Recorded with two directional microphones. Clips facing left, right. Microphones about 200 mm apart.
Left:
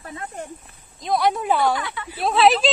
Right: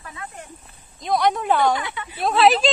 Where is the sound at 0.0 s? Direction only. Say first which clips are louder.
Left 3 dB; 35° left (ahead or behind).